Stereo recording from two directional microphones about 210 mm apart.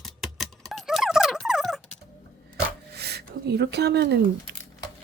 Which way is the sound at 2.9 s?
50° right (ahead or behind).